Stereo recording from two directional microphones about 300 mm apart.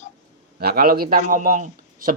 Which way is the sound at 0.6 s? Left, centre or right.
Right.